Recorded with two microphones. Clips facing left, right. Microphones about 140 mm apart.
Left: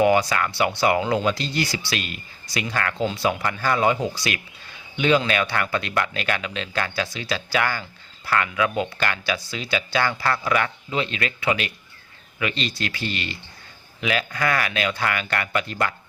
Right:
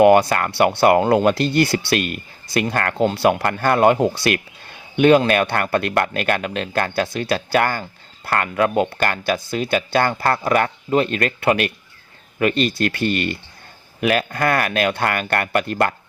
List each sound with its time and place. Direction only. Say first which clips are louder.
0.0 s speech: right 6 dB; 55° right (ahead or behind)